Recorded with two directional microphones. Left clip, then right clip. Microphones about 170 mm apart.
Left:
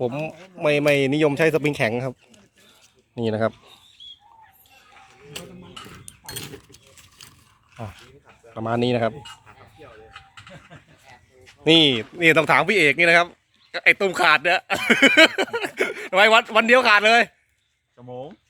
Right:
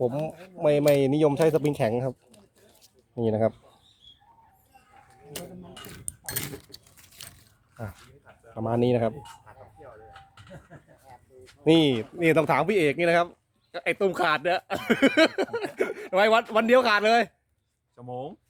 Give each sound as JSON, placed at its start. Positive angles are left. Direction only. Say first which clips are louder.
{"t": 0.3, "sound": "speech", "louder": "left 2 dB", "side_deg": 0}
{"t": 3.2, "sound": "speech", "louder": "left 2 dB", "side_deg": 0}
{"t": 6.1, "sound": "dog", "louder": "right 3 dB", "side_deg": -30}
{"t": 8.5, "sound": "speech", "louder": "left 2 dB", "side_deg": -5}
{"t": 11.6, "sound": "speech", "louder": "left 5 dB", "side_deg": -5}
{"t": 17.9, "sound": "speech", "louder": "even", "side_deg": -25}